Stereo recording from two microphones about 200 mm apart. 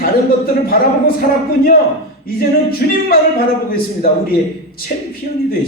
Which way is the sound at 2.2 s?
45° left (ahead or behind).